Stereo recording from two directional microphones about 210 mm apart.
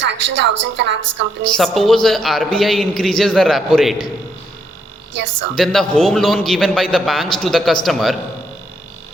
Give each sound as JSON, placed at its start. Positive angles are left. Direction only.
{"t": 0.0, "sound": "a woman's voice", "side_deg": -60}
{"t": 1.5, "sound": "a man's voice", "side_deg": 0}
{"t": 5.1, "sound": "a woman's voice", "side_deg": -60}
{"t": 5.5, "sound": "a man's voice", "side_deg": 0}